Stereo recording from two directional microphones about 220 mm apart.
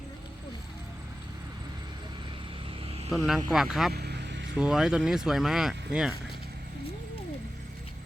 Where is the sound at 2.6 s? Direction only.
25° right (ahead or behind).